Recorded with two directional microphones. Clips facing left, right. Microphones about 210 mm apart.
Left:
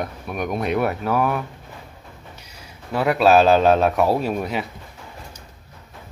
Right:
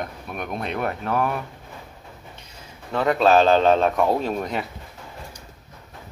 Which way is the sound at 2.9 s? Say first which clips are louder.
Left 2 dB; 10° left (ahead or behind).